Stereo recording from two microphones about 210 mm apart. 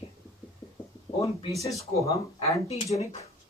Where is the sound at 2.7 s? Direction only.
30° left (ahead or behind).